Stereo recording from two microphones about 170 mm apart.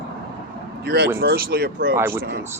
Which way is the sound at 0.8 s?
75° right (ahead or behind).